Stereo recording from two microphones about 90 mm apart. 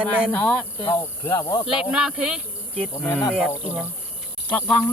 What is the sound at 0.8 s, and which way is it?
Speech, 65° left (ahead or behind).